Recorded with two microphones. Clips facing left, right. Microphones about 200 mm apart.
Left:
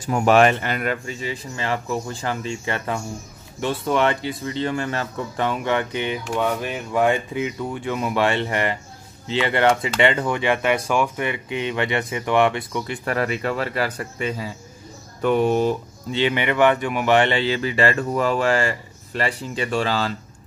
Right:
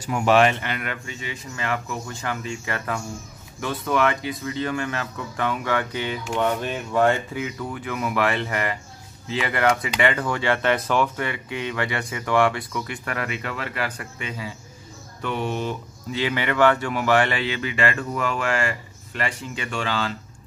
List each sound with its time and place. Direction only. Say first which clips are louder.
0.0 s a man's voice: left 2 dB; 45° left (ahead or behind); by 6.1 s 20° left (ahead or behind)
6.2 s speech: right 3 dB; 5° left (ahead or behind)
7.3 s speech: left 4 dB; 25° left (ahead or behind); by 15.7 s 40° left (ahead or behind)
16.1 s a man's voice: left 3 dB; 25° left (ahead or behind)